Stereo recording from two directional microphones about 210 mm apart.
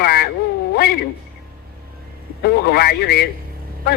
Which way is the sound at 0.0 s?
50° left (ahead or behind).